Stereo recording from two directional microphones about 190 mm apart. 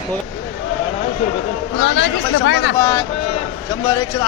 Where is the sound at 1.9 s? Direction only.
75° left (ahead or behind).